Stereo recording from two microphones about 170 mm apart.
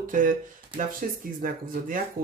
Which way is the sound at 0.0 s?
50° right (ahead or behind).